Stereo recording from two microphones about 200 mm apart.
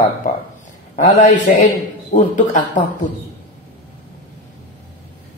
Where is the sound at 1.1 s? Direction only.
35° left (ahead or behind).